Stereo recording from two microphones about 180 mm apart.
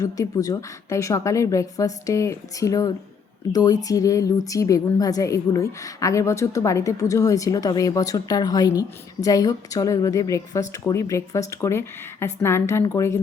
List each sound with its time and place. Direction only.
0.0 s a woman's voice: 20° left (ahead or behind)